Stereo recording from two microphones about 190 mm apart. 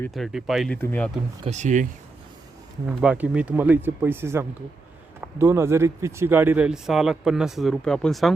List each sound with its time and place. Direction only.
0.1 s speech: centre (ahead or behind)
1.5 s speech: 40° right (ahead or behind)
2.8 s speech: 5° right (ahead or behind)